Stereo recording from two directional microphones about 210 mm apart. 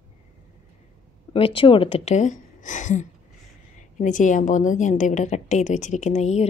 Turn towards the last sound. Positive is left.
turn(degrees=30)  # may be behind; listen again after turning